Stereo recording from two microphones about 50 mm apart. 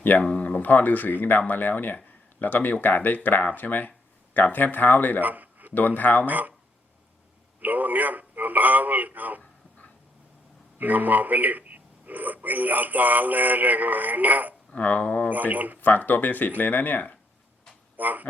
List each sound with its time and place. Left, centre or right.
0.0 s speech: left
0.3 s speech: left
0.6 s speech: left
5.2 s a sound: right
5.7 s speech: left
6.2 s speech: right
7.6 s speech: right
9.4 s a sound: left
10.8 s speech: right
14.8 s speech: left
15.3 s speech: right
15.8 s speech: left
17.9 s a sound: right